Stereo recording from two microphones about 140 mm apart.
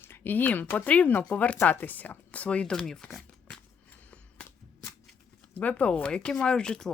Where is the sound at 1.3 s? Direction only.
10° left (ahead or behind).